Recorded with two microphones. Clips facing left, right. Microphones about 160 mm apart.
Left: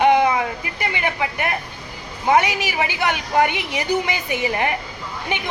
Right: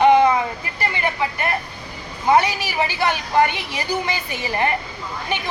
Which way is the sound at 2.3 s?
15° left (ahead or behind).